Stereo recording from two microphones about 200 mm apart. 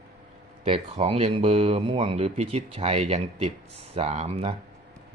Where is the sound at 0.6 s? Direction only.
30° right (ahead or behind).